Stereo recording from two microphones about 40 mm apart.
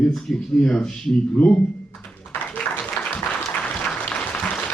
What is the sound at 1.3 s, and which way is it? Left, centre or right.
Speech, left.